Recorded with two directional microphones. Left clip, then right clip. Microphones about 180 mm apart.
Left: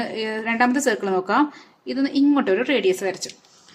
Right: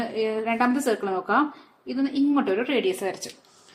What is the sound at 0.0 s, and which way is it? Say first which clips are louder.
A woman's voice: even; 30° left (ahead or behind).